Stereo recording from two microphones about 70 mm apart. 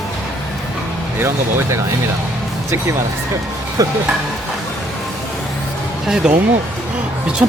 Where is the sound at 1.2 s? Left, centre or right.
Right.